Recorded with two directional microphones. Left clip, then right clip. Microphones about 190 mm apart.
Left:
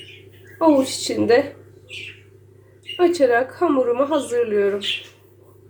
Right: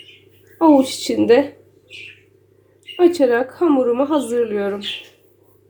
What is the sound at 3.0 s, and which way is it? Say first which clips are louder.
A woman's voice: right 2 dB; 50° right (ahead or behind).